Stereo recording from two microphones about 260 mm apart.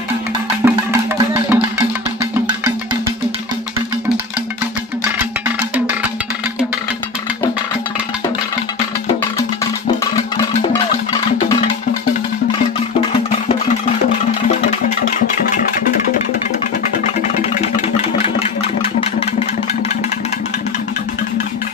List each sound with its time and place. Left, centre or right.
0.7 s music: centre
18.1 s engine: left